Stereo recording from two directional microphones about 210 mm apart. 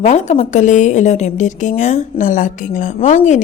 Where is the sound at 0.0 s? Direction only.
35° left (ahead or behind).